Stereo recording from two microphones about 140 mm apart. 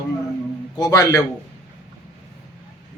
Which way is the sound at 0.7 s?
25° left (ahead or behind).